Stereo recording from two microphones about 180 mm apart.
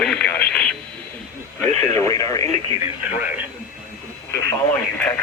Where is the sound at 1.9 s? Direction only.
20° left (ahead or behind).